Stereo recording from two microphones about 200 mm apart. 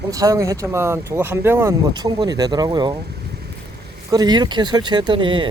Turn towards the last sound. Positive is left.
turn(degrees=-25)  # may be behind; listen again after turning